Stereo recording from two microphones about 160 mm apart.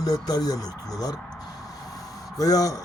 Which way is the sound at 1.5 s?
20° left (ahead or behind).